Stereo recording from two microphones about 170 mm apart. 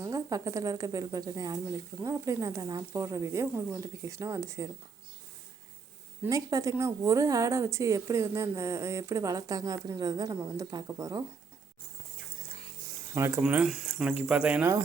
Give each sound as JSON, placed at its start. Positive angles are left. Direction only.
{"t": 0.0, "sound": "speech", "side_deg": -20}
{"t": 6.2, "sound": "speech", "side_deg": -20}
{"t": 13.1, "sound": "speech", "side_deg": -15}